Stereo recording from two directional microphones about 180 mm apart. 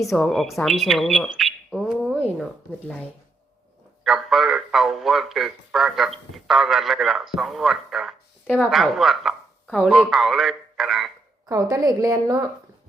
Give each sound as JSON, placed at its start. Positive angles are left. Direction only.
{"t": 0.1, "sound": "speech", "side_deg": 0}
{"t": 2.4, "sound": "a man's voice", "side_deg": 10}
{"t": 11.4, "sound": "a woman's voice", "side_deg": -20}